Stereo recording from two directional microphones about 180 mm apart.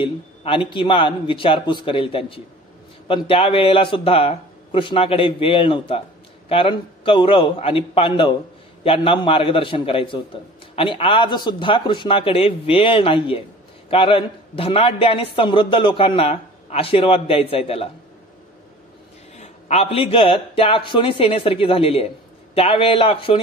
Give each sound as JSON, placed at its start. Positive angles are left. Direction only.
{"t": 0.0, "sound": "a man's voice", "side_deg": 30}
{"t": 19.3, "sound": "a man's voice", "side_deg": 35}